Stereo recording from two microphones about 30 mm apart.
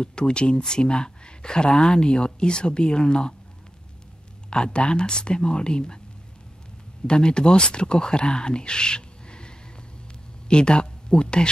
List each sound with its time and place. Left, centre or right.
0.0 s speech: left
4.5 s speech: left
7.1 s speech: left